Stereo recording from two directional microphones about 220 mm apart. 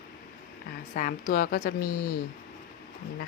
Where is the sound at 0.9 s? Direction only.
40° left (ahead or behind).